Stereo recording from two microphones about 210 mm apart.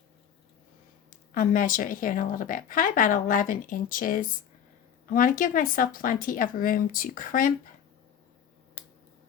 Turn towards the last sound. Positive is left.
turn(degrees=40)  # may be behind; listen again after turning